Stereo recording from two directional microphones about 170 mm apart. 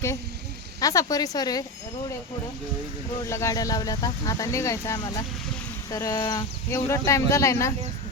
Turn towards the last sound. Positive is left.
turn(degrees=15)  # may be behind; listen again after turning